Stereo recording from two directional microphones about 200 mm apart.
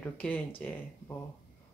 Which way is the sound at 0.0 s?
10° left (ahead or behind).